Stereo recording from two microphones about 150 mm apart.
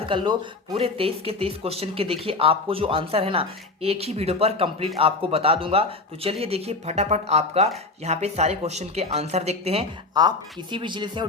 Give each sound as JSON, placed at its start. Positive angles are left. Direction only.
{"t": 0.0, "sound": "speech", "side_deg": -35}
{"t": 10.2, "sound": "speech", "side_deg": -30}